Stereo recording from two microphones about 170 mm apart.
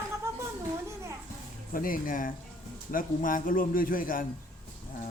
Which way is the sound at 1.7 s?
55° left (ahead or behind).